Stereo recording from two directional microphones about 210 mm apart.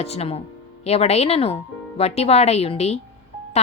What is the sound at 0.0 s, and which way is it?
A woman's voice, 30° left (ahead or behind).